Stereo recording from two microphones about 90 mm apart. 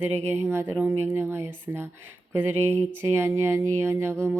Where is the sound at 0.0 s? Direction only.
25° right (ahead or behind).